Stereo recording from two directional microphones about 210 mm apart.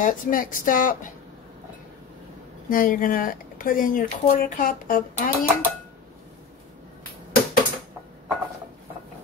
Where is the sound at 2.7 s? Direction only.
40° left (ahead or behind).